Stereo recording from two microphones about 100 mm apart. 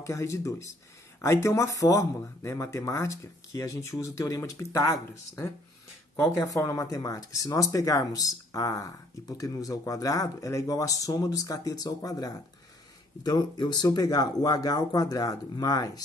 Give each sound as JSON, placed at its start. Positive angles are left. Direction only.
{"t": 0.0, "sound": "speech", "side_deg": 30}